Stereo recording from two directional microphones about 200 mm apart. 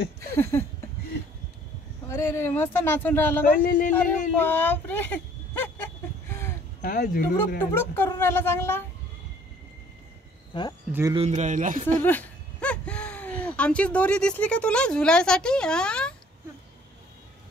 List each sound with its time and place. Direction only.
0.4 s speech: 15° left (ahead or behind)
2.0 s speech: 15° left (ahead or behind)
3.6 s speech: 40° left (ahead or behind)
4.4 s a child's voice: 10° left (ahead or behind)
6.2 s a sound: 10° left (ahead or behind)
6.8 s speech: 50° left (ahead or behind)
7.3 s speech: 10° left (ahead or behind)
10.9 s speech: 10° right (ahead or behind)
11.1 s speech: 35° right (ahead or behind)
12.0 s speech: 10° left (ahead or behind)